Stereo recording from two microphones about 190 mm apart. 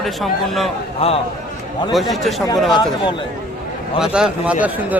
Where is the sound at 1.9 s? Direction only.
Centre (ahead or behind).